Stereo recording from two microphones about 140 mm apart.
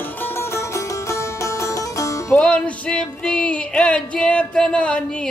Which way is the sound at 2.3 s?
5° left (ahead or behind).